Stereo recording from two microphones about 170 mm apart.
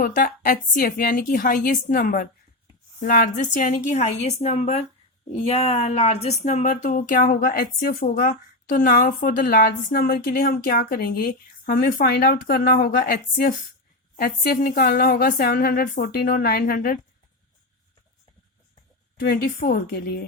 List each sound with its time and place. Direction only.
0.0 s a woman's voice: 55° left (ahead or behind)
19.2 s a woman's voice: 65° left (ahead or behind)